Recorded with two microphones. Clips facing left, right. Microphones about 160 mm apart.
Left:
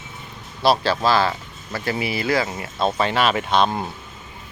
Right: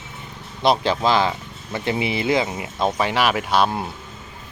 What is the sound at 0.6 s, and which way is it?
Speech, 20° right (ahead or behind).